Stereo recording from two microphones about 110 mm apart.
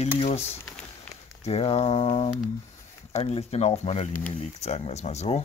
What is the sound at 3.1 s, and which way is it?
Speech, 75° left (ahead or behind).